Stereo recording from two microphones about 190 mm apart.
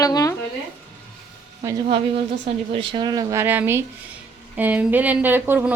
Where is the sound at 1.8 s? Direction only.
30° right (ahead or behind).